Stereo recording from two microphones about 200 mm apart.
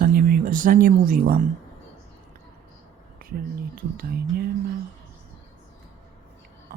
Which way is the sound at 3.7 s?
50° right (ahead or behind).